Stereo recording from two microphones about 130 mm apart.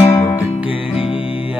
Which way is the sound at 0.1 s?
15° left (ahead or behind).